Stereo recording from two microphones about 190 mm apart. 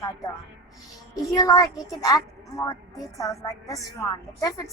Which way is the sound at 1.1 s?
20° left (ahead or behind).